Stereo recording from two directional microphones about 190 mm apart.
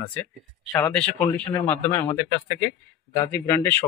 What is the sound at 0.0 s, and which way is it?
Speech, 10° left (ahead or behind).